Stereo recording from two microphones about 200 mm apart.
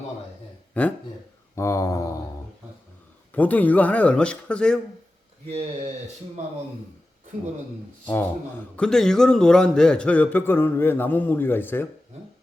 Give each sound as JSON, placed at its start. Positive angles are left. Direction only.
{"t": 0.7, "sound": "speech", "side_deg": 5}
{"t": 1.5, "sound": "mantra", "side_deg": 15}
{"t": 3.3, "sound": "a man's voice", "side_deg": 10}
{"t": 8.0, "sound": "a man's voice", "side_deg": 10}